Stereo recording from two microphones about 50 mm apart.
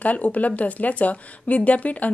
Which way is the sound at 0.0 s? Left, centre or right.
Left.